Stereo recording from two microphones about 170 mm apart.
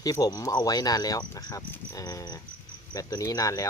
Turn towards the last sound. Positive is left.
turn(degrees=20)  # may be behind; listen again after turning